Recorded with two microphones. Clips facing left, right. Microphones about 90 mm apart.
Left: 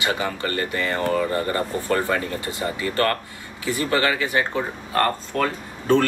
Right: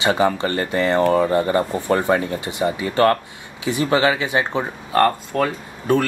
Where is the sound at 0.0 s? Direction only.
25° right (ahead or behind).